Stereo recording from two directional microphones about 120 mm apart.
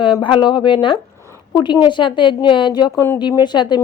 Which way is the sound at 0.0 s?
45° left (ahead or behind).